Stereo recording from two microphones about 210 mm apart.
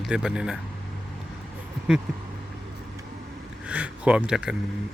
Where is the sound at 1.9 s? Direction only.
5° right (ahead or behind).